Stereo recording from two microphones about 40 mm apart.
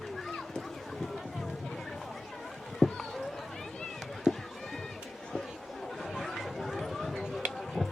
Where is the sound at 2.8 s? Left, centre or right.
Centre.